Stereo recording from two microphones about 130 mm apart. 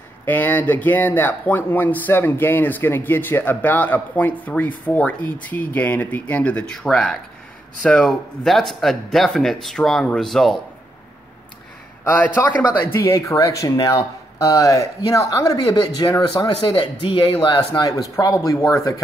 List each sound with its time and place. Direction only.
0.2 s speech: 15° left (ahead or behind)
12.0 s a man's voice: 15° left (ahead or behind)